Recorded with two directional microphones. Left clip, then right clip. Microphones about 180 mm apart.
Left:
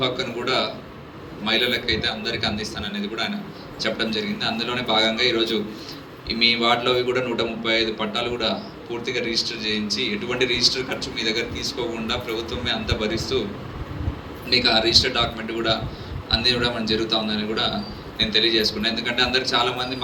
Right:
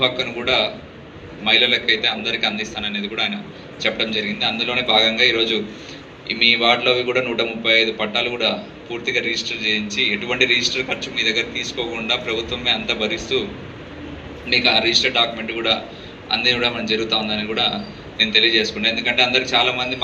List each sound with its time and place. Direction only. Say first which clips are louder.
0.0 s a man's voice: right 4 dB; 70° left (ahead or behind)
14.5 s a man's voice: right 2 dB; 70° left (ahead or behind)